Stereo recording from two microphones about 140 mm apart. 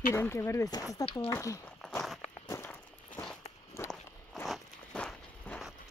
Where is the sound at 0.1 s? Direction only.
20° left (ahead or behind).